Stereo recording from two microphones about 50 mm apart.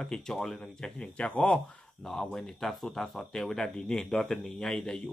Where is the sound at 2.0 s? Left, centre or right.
Centre.